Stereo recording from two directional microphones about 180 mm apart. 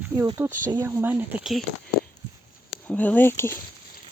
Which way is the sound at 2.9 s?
10° left (ahead or behind).